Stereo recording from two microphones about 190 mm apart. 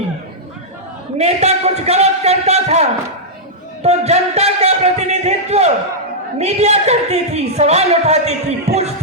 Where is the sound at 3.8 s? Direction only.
35° right (ahead or behind).